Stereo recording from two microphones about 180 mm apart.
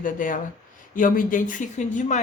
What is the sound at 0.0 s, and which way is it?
Speech, 50° left (ahead or behind).